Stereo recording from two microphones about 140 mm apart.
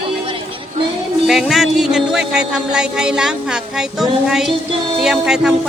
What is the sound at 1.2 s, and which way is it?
Music, centre (ahead or behind).